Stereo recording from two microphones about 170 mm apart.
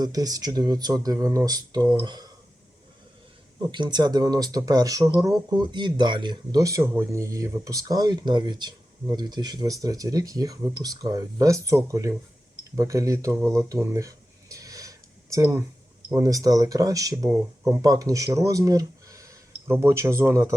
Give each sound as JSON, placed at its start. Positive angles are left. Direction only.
{"t": 0.0, "sound": "speech", "side_deg": -20}
{"t": 3.7, "sound": "speech", "side_deg": -25}
{"t": 13.5, "sound": "a sound", "side_deg": -20}
{"t": 16.0, "sound": "speech", "side_deg": -20}